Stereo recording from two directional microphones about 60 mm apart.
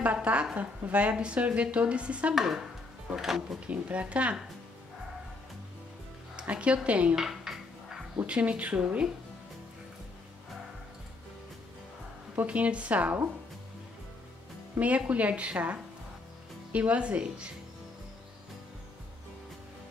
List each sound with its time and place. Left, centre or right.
0.0 s a woman's voice: right
2.3 s speech: centre
3.6 s a woman's voice: right
6.3 s a woman's voice: centre
7.2 s speech: centre
8.3 s a woman's voice: right
12.4 s a woman's voice: right
14.8 s a woman's voice: right